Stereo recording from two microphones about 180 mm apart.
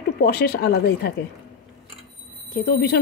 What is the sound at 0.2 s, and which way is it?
Speech, 60° left (ahead or behind).